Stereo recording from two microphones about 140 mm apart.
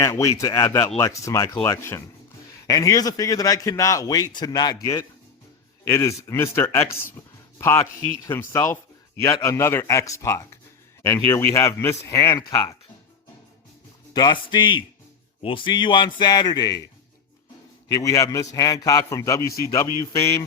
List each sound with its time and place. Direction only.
0.0 s a man's voice: 25° left (ahead or behind)
14.1 s a man's voice: 30° left (ahead or behind)
17.8 s a man's voice: 25° left (ahead or behind)